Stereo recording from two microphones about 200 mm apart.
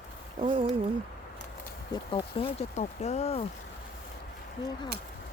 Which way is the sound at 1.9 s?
25° left (ahead or behind).